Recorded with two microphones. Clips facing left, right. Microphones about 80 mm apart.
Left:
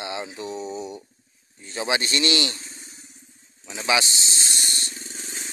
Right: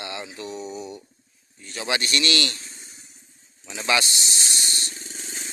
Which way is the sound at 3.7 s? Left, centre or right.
Centre.